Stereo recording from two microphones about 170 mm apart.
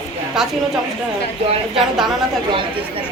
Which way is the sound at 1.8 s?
Centre (ahead or behind).